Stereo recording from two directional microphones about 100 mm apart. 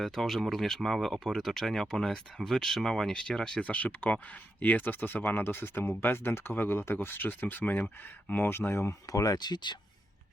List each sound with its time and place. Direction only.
0.0 s speech: centre (ahead or behind); by 9.7 s 45° left (ahead or behind)